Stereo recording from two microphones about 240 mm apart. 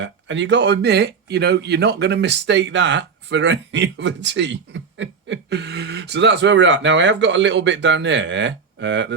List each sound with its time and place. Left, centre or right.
0.0 s speech: right